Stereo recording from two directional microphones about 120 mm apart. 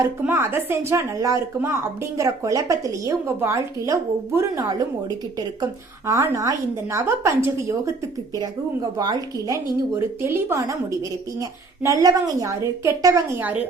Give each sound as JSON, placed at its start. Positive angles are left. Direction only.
{"t": 0.3, "sound": "a woman's voice", "side_deg": -20}
{"t": 9.0, "sound": "a woman's voice", "side_deg": -30}
{"t": 9.9, "sound": "a woman's voice", "side_deg": -20}
{"t": 13.4, "sound": "speech", "side_deg": -15}